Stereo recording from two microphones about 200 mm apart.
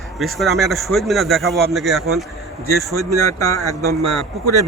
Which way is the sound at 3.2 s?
15° left (ahead or behind).